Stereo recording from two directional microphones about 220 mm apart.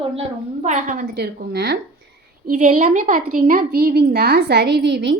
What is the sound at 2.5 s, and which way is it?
A woman's voice, 35° right (ahead or behind).